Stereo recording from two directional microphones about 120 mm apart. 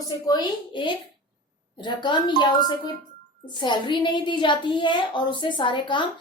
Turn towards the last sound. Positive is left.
turn(degrees=40)  # may be behind; listen again after turning